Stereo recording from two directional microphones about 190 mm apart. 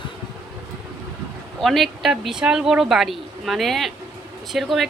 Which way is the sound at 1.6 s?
Centre (ahead or behind).